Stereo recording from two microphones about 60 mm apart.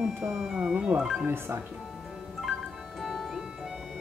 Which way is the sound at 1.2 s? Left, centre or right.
Right.